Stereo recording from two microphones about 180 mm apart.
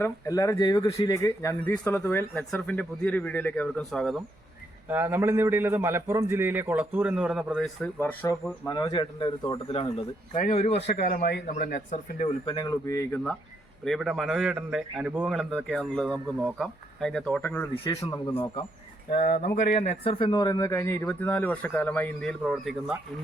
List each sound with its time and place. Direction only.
0.0 s speech: 15° left (ahead or behind); by 4.2 s centre (ahead or behind)
4.9 s a man's voice: 10° right (ahead or behind)
7.9 s speech: 10° left (ahead or behind)
8.6 s speech: 20° left (ahead or behind)
10.9 s speech: 50° left (ahead or behind)
11.5 s speech: 50° left (ahead or behind)
12.5 s a man's voice: 20° left (ahead or behind)
18.3 s speech: 30° left (ahead or behind)
19.2 s speech: 45° left (ahead or behind); by 22.7 s centre (ahead or behind)